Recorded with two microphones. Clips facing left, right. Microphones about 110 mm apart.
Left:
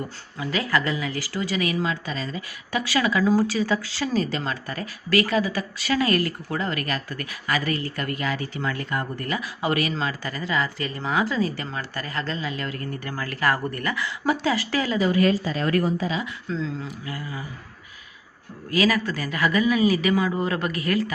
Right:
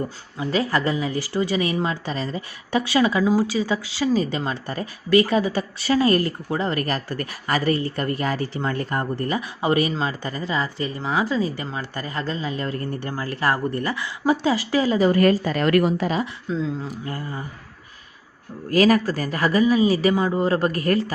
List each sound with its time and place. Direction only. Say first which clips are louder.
0.3 s speech: right 2 dB; 30° right (ahead or behind); by 12.4 s 15° right (ahead or behind)
12.4 s speech: right 3 dB; 30° right (ahead or behind)
15.2 s speech: right 3 dB; 55° right (ahead or behind); by 16.0 s 75° right (ahead or behind)
16.5 s speech: right 2 dB; 10° right (ahead or behind)
17.1 s a man's voice: right 2 dB; 40° right (ahead or behind)
18.7 s a man's voice: right 5 dB; 45° right (ahead or behind)